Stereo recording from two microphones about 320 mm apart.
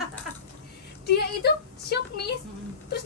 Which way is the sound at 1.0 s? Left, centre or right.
Left.